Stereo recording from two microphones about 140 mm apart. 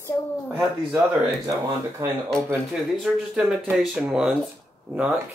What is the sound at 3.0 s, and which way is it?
Speech, 5° right (ahead or behind).